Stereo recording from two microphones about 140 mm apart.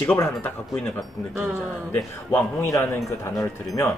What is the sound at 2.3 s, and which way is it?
Speech, 20° left (ahead or behind).